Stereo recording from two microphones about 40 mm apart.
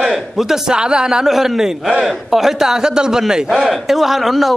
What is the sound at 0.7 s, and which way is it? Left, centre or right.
Speech, right.